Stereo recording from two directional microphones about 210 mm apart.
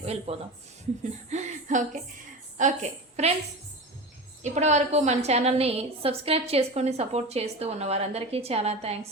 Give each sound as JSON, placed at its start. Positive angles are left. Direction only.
{"t": 0.0, "sound": "a woman's voice", "side_deg": -30}
{"t": 4.4, "sound": "a woman's voice", "side_deg": -35}